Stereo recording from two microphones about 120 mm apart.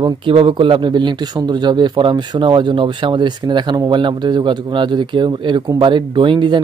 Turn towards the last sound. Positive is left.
turn(degrees=-40)  # may be behind; listen again after turning